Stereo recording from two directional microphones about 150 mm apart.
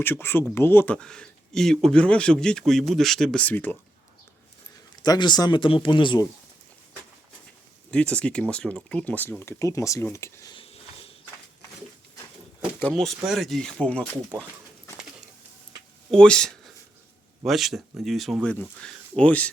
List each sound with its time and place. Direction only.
0.0 s speech: 15° left (ahead or behind)
5.0 s speech: 30° left (ahead or behind)
7.9 s speech: 10° left (ahead or behind)
10.5 s a sound: 40° left (ahead or behind)
12.8 s speech: 5° left (ahead or behind)
16.1 s speech: 5° left (ahead or behind)